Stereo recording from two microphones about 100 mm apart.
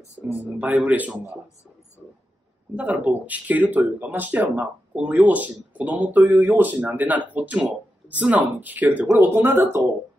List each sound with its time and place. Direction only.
0.6 s speech: 15° right (ahead or behind)
2.7 s speech: 15° right (ahead or behind)